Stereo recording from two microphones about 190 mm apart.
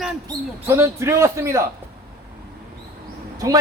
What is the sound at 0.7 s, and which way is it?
Speech, 15° right (ahead or behind).